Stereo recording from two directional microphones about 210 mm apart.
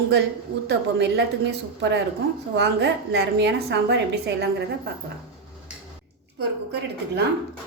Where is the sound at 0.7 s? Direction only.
55° right (ahead or behind).